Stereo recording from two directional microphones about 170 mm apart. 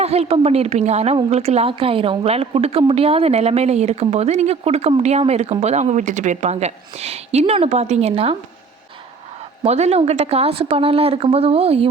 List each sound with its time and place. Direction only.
0.0 s a woman's voice: 35° right (ahead or behind)
9.6 s a woman's voice: 40° right (ahead or behind)